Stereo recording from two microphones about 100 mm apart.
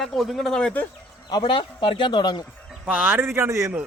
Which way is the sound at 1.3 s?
50° left (ahead or behind).